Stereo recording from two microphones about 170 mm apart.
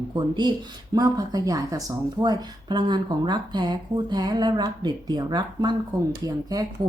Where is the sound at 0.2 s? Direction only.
25° right (ahead or behind).